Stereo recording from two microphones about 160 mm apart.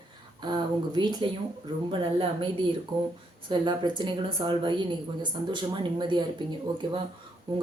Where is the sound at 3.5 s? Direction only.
30° right (ahead or behind).